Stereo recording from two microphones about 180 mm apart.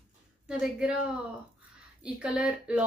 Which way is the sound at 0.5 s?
5° right (ahead or behind).